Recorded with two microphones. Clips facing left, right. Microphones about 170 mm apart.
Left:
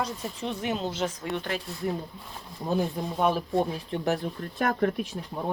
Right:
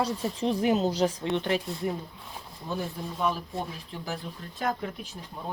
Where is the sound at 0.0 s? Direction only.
30° right (ahead or behind).